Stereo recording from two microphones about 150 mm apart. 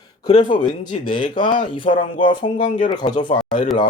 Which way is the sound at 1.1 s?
65° left (ahead or behind).